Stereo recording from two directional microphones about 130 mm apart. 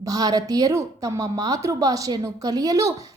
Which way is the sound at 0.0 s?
30° right (ahead or behind).